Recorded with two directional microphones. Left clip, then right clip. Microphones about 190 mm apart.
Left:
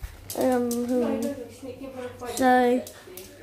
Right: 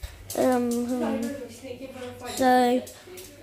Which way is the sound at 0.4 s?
15° right (ahead or behind).